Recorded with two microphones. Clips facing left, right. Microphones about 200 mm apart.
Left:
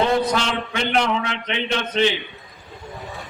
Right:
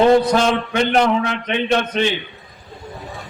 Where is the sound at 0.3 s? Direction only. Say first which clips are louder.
Right 7 dB; 50° right (ahead or behind).